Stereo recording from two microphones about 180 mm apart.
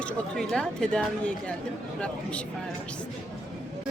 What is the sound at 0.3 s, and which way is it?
Speech, 5° left (ahead or behind).